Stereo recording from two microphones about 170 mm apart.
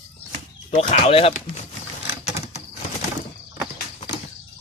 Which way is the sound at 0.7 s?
40° left (ahead or behind).